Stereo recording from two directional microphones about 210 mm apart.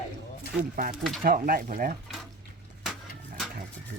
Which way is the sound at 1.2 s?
45° right (ahead or behind).